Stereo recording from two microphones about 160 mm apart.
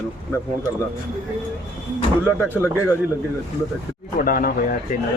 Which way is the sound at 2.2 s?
10° right (ahead or behind).